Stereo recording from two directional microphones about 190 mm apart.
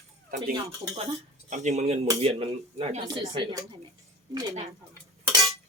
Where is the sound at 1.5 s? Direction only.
40° right (ahead or behind); by 4.6 s 25° right (ahead or behind).